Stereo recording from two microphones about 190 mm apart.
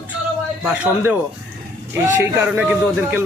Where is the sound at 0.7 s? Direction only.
10° right (ahead or behind).